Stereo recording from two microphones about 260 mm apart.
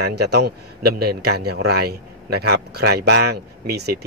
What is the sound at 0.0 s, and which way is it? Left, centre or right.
Speech, right.